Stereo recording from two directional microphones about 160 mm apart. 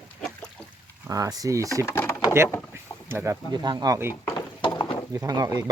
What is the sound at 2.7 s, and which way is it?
Vehicle, 15° right (ahead or behind).